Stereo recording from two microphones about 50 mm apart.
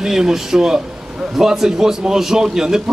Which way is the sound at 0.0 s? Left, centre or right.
Centre.